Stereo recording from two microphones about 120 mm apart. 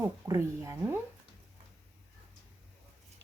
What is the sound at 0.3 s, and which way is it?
Speech, 25° right (ahead or behind).